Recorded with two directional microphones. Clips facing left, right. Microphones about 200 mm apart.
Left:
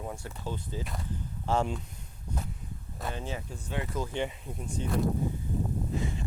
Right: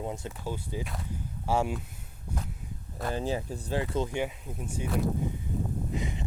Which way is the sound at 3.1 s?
35° right (ahead or behind).